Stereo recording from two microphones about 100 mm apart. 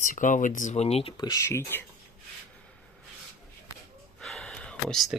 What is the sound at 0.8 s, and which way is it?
Speech, 90° left.